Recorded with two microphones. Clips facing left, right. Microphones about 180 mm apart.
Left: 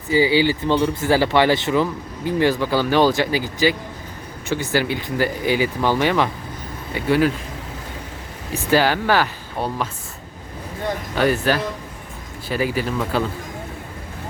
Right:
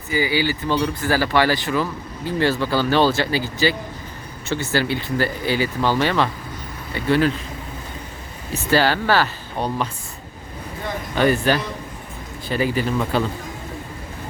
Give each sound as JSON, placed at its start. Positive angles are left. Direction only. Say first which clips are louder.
{"t": 0.1, "sound": "speech", "louder": "left 5 dB", "side_deg": 25}
{"t": 8.7, "sound": "speech", "louder": "left 1 dB", "side_deg": 15}
{"t": 11.1, "sound": "speech", "louder": "right 1 dB", "side_deg": 5}